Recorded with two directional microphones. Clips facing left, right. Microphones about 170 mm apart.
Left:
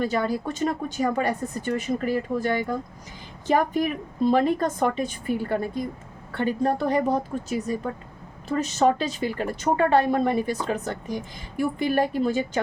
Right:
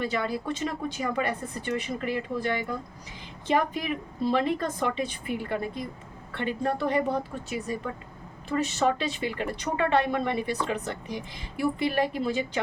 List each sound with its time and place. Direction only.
0.0 s a woman's voice: 40° left (ahead or behind)